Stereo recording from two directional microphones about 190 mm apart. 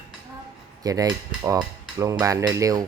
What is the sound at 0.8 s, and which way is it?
Cutlery, 20° right (ahead or behind).